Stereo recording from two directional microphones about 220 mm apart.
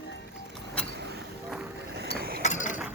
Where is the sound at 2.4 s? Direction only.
35° left (ahead or behind).